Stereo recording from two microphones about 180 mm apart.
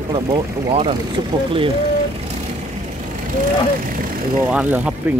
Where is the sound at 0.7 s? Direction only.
30° right (ahead or behind).